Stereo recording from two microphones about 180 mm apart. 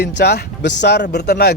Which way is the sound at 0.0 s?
70° left (ahead or behind).